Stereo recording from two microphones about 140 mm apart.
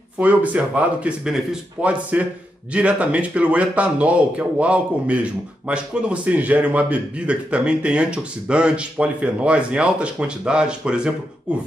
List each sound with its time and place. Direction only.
0.2 s a man's voice: 10° right (ahead or behind)